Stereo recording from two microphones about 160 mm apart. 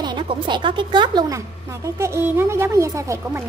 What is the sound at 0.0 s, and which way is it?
A woman's voice, 30° right (ahead or behind).